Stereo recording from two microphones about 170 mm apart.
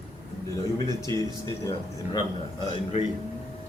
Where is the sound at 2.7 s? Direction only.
40° left (ahead or behind).